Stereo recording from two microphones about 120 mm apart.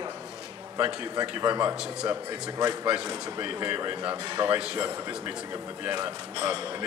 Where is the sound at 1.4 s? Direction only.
30° right (ahead or behind).